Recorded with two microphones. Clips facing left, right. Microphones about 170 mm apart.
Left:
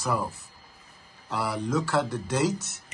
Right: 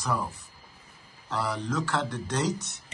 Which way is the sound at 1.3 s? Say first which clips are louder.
Left 2 dB; 10° left (ahead or behind).